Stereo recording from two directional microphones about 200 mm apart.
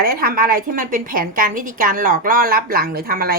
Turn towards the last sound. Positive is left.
turn(degrees=-50)  # may be behind; listen again after turning